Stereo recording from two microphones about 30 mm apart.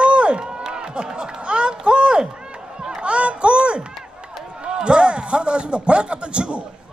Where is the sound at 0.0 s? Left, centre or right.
Right.